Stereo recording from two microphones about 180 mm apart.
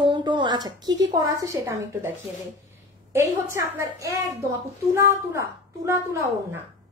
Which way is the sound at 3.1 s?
15° right (ahead or behind).